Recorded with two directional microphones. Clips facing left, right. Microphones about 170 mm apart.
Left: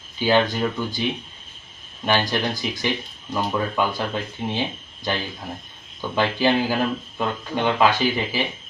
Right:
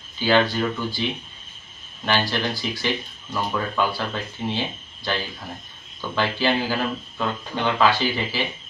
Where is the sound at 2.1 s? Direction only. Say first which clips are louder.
Left 2 dB; 15° left (ahead or behind).